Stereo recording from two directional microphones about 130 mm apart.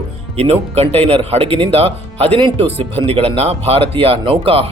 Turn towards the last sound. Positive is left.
turn(degrees=-45)  # may be behind; listen again after turning